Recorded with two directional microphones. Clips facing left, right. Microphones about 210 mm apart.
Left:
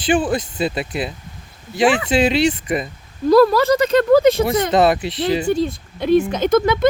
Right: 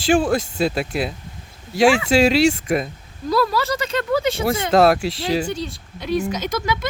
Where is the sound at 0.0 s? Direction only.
Centre (ahead or behind).